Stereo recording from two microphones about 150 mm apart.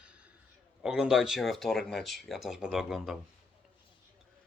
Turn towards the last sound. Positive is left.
turn(degrees=-5)  # may be behind; listen again after turning